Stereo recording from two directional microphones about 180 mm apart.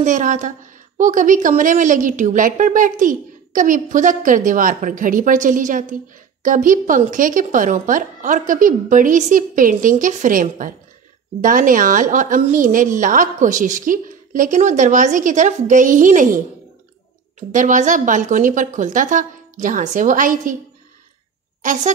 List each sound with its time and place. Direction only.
0.0 s a woman's voice: 45° right (ahead or behind)
21.6 s a woman's voice: 45° right (ahead or behind)